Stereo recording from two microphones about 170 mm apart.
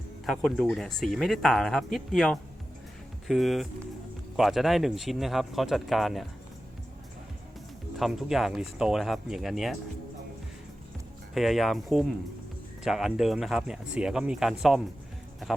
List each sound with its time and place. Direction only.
0.3 s speech: centre (ahead or behind)
7.9 s speech: centre (ahead or behind)
11.3 s speech: centre (ahead or behind)